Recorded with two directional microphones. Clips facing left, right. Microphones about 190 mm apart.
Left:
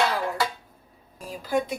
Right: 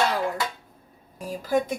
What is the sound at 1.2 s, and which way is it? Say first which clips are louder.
Speech: right 2 dB; 45° right (ahead or behind).